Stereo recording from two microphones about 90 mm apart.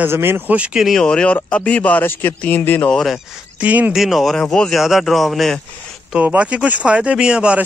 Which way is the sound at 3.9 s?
Centre (ahead or behind).